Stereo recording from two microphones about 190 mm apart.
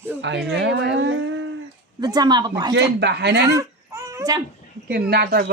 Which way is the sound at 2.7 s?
65° right (ahead or behind).